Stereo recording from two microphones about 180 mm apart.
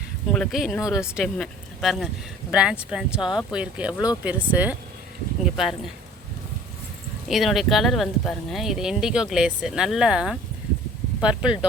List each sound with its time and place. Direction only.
0.3 s speech: centre (ahead or behind)
7.3 s speech: centre (ahead or behind)